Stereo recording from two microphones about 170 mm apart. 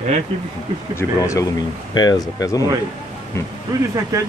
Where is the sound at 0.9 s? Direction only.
20° left (ahead or behind).